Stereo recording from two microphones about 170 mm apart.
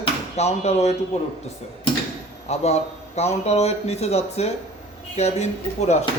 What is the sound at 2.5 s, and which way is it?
Speech, 40° left (ahead or behind).